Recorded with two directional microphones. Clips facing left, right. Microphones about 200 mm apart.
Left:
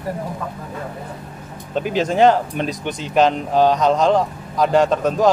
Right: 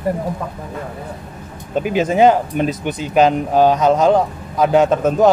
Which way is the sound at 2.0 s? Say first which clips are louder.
Right 2 dB; 5° right (ahead or behind).